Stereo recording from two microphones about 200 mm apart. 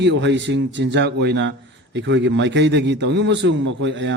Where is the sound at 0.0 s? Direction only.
60° right (ahead or behind).